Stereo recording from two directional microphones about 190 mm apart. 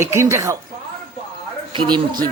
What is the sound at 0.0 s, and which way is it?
Speech, 15° right (ahead or behind).